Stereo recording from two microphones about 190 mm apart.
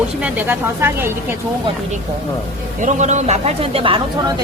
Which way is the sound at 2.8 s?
40° right (ahead or behind).